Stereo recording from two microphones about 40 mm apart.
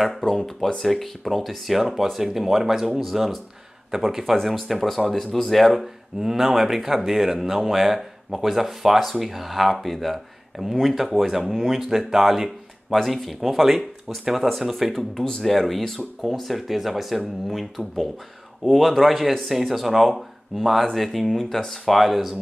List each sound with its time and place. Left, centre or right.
0.2 s speech: centre
4.6 s speech: centre
12.9 s speech: centre
15.1 s speech: centre
15.4 s speech: centre
21.9 s speech: centre